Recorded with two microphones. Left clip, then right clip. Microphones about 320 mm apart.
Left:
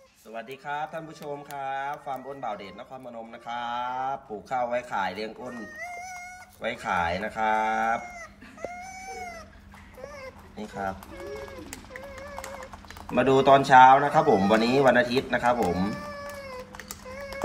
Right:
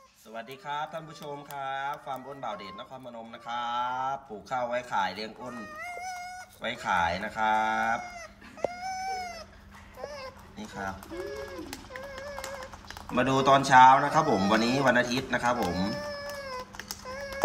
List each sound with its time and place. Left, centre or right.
0.3 s speech: centre
8.8 s goat: right
10.6 s speech: centre
13.1 s speech: centre
16.4 s a sound: right